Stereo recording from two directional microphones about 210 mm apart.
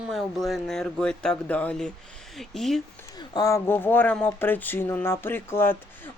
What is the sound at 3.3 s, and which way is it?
Speech, 15° left (ahead or behind).